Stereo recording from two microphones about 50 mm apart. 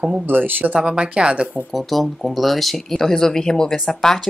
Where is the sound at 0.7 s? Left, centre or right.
Centre.